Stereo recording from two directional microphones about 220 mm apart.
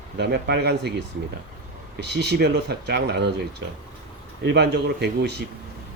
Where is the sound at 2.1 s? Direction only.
50° right (ahead or behind).